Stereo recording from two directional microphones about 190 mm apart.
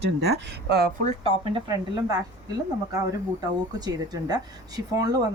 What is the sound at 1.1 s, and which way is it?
Speech, 30° right (ahead or behind).